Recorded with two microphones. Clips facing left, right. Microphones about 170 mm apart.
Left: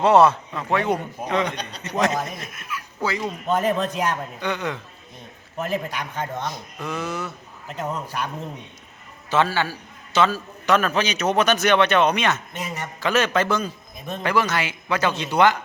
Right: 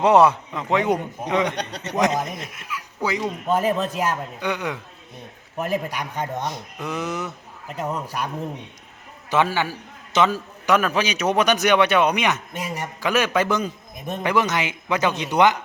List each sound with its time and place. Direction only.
0.0 s a man's voice: 15° right (ahead or behind)
9.3 s a man's voice: 15° right (ahead or behind)